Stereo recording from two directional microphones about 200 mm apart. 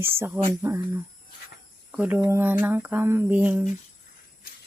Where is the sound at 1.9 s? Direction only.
10° right (ahead or behind).